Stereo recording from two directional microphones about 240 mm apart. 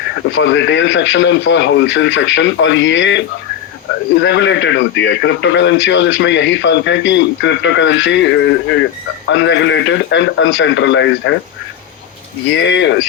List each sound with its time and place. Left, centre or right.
0.3 s a man's voice: left
12.5 s a man's voice: left